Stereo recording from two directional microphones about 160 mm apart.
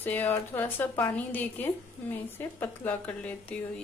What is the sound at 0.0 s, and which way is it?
A woman's voice, 10° left (ahead or behind).